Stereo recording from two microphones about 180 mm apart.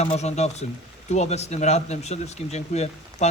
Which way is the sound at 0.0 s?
40° left (ahead or behind).